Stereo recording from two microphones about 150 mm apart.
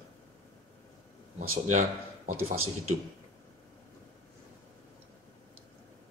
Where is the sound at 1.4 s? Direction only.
70° right (ahead or behind).